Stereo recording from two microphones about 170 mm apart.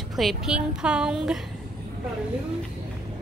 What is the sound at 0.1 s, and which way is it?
A woman's voice, centre (ahead or behind).